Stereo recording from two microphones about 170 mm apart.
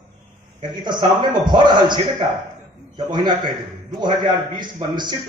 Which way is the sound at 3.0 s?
25° right (ahead or behind).